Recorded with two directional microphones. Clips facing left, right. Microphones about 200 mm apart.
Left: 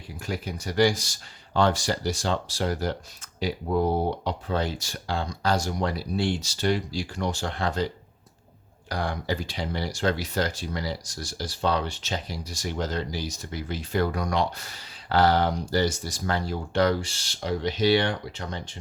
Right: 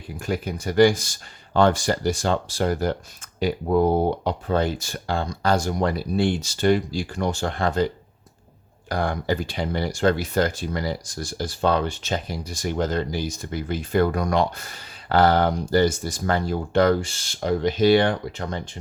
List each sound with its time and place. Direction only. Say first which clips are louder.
0.2 s speech: right 5 dB; 50° right (ahead or behind)
8.9 s speech: right 5 dB; 50° right (ahead or behind)